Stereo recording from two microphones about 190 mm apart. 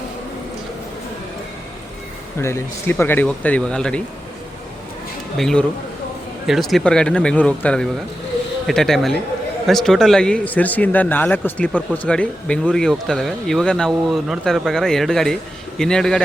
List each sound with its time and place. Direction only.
2.4 s speech: 15° left (ahead or behind)
5.4 s speech: centre (ahead or behind)